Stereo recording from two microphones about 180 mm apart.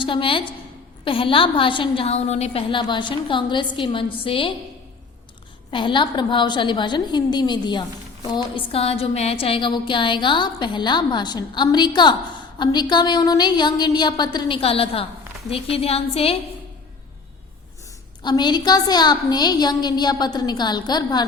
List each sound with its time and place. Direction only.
0.0 s a woman's voice: 30° left (ahead or behind)
5.7 s a woman's voice: 25° left (ahead or behind)
18.2 s a woman's voice: 25° left (ahead or behind)